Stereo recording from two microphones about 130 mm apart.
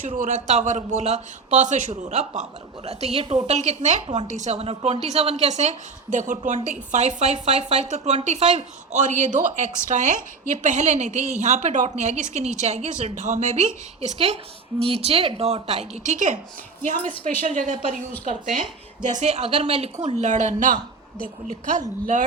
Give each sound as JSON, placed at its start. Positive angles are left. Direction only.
{"t": 0.2, "sound": "a man's voice", "side_deg": -65}
{"t": 3.4, "sound": "a man's voice", "side_deg": -60}
{"t": 14.8, "sound": "a woman's voice", "side_deg": -50}
{"t": 16.8, "sound": "a woman's voice", "side_deg": -85}
{"t": 19.0, "sound": "a man's voice", "side_deg": -65}
{"t": 20.0, "sound": "a woman's voice", "side_deg": -65}